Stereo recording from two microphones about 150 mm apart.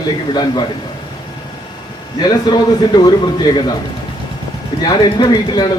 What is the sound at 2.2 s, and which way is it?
A man's voice, 25° left (ahead or behind).